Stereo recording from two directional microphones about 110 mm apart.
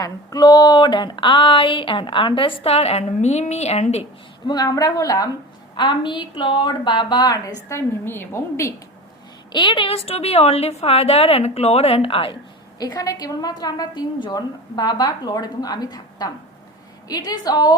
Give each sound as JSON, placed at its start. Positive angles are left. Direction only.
{"t": 0.0, "sound": "speech", "side_deg": 35}
{"t": 4.4, "sound": "a woman's voice", "side_deg": 35}
{"t": 5.7, "sound": "speech", "side_deg": 45}
{"t": 7.7, "sound": "a woman's voice", "side_deg": 20}
{"t": 9.5, "sound": "a woman's voice", "side_deg": 45}
{"t": 12.8, "sound": "a woman's voice", "side_deg": 35}